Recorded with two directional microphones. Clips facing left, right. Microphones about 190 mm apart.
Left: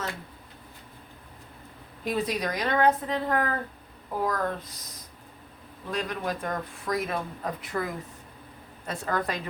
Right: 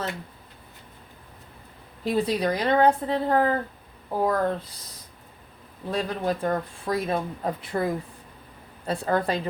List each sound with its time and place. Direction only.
2.0 s speech: 30° right (ahead or behind)
5.9 s speech: 30° right (ahead or behind)